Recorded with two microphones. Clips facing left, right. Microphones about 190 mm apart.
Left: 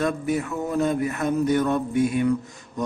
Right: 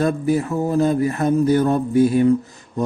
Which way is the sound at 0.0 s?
35° right (ahead or behind).